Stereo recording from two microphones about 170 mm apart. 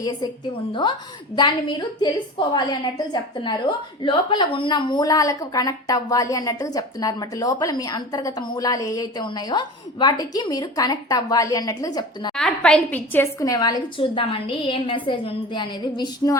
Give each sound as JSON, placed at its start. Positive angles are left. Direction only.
{"t": 0.0, "sound": "a woman's voice", "side_deg": 25}
{"t": 12.3, "sound": "a woman's voice", "side_deg": 5}
{"t": 13.4, "sound": "a woman's voice", "side_deg": 20}